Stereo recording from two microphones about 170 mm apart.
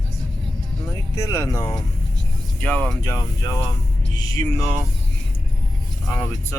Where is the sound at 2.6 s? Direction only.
5° left (ahead or behind).